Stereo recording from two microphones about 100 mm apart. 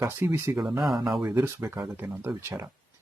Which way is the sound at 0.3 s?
25° right (ahead or behind).